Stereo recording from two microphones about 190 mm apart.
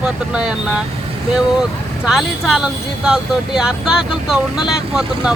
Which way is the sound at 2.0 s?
Centre (ahead or behind).